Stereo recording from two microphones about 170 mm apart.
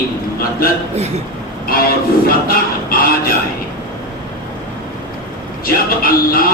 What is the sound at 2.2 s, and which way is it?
Music, 60° left (ahead or behind).